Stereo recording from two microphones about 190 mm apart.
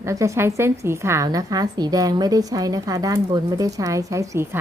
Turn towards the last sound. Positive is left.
turn(degrees=-15)  # may be behind; listen again after turning